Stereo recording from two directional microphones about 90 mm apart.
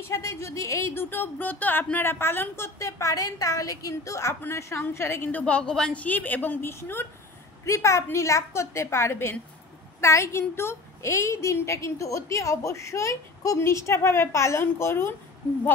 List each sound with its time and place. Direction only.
0.0 s a woman's voice: 30° left (ahead or behind)